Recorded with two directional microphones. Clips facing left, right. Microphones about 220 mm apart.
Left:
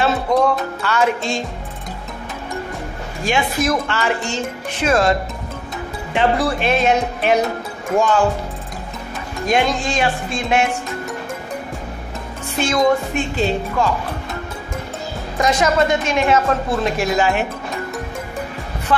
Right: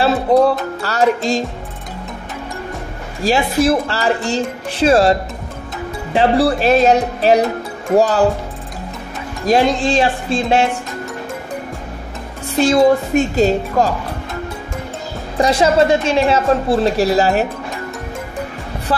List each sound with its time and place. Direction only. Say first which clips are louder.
0.0 s a woman's voice: right 4 dB; 35° right (ahead or behind)
3.3 s a woman's voice: right 5 dB; 35° right (ahead or behind)
6.1 s a woman's voice: right 4 dB; 35° right (ahead or behind)
9.5 s a woman's voice: right 5 dB; 35° right (ahead or behind)
12.5 s a woman's voice: right 5 dB; 35° right (ahead or behind)
15.3 s a woman's voice: right 4 dB; 30° right (ahead or behind)
18.9 s a woman's voice: left 1 dB; 35° right (ahead or behind)